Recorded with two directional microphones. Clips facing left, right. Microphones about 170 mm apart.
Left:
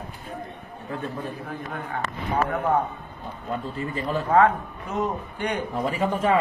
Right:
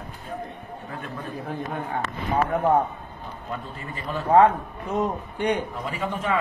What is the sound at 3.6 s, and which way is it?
Speech, 30° left (ahead or behind).